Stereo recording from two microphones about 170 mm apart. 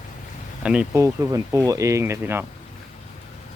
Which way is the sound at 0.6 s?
5° right (ahead or behind).